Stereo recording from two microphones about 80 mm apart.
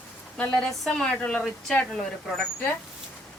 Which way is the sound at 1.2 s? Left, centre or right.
Centre.